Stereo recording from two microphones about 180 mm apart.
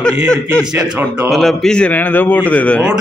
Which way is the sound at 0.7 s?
15° right (ahead or behind).